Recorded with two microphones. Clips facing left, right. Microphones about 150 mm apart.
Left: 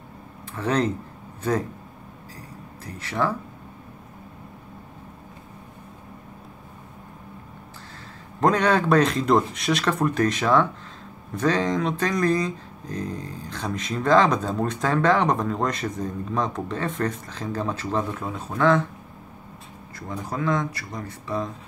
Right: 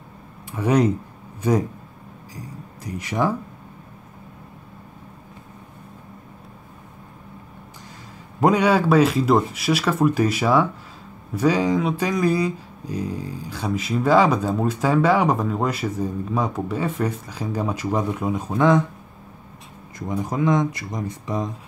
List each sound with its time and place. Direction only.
0.5 s speech: 10° right (ahead or behind)
2.3 s a sound: 15° right (ahead or behind)
8.4 s speech: 10° right (ahead or behind)
20.0 s speech: 15° right (ahead or behind)